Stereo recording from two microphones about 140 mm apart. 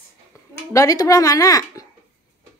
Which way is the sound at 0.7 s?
25° left (ahead or behind).